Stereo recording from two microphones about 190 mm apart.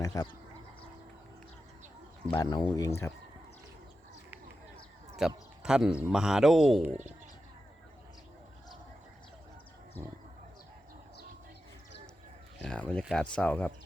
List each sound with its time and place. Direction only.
0.0 s speech: 15° left (ahead or behind)
2.3 s speech: 20° left (ahead or behind)
5.2 s a man's voice: centre (ahead or behind)
12.6 s a man's voice: 5° left (ahead or behind)